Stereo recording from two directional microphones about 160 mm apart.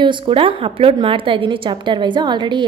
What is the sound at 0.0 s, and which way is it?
A woman's voice, 30° right (ahead or behind).